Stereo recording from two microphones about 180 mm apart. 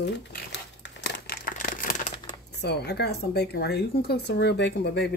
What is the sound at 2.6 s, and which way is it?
Speech, 65° left (ahead or behind).